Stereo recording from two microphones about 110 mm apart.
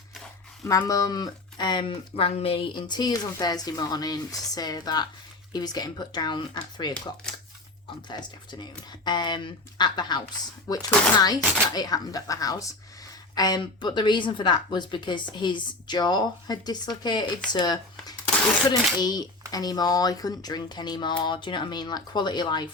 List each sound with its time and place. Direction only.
0.8 s speech: 35° left (ahead or behind)
8.1 s a woman's voice: 40° left (ahead or behind)